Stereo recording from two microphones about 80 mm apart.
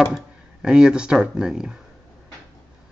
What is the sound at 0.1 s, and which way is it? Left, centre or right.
Speech, centre.